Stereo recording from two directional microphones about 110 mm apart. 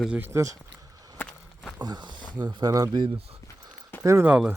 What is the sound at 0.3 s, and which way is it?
Speech, 25° right (ahead or behind).